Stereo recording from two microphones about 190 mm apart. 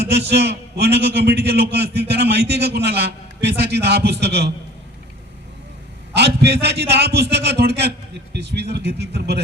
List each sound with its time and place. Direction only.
0.1 s a man's voice: 60° right (ahead or behind)
6.1 s a man's voice: 60° right (ahead or behind)